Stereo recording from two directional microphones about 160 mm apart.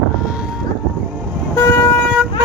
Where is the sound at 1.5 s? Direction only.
15° left (ahead or behind).